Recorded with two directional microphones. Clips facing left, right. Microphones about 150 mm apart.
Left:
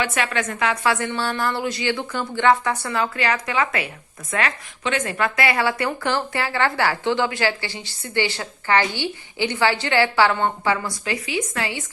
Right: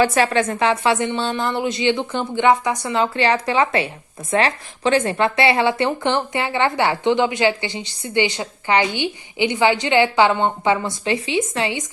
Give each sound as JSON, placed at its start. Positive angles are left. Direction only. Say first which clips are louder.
{"t": 0.0, "sound": "a woman's voice", "louder": "right 7 dB", "side_deg": -35}